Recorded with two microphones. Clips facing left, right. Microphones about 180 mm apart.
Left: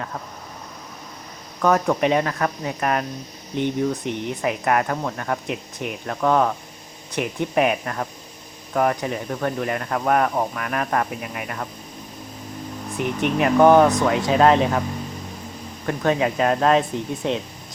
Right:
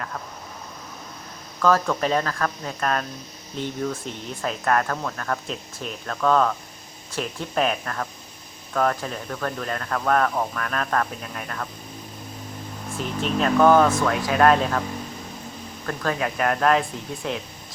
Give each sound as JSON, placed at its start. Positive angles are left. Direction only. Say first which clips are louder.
{"t": 1.6, "sound": "speech", "louder": "left 2 dB", "side_deg": 20}
{"t": 13.0, "sound": "speech", "louder": "left 3 dB", "side_deg": 15}
{"t": 15.9, "sound": "speech", "louder": "left 5 dB", "side_deg": 20}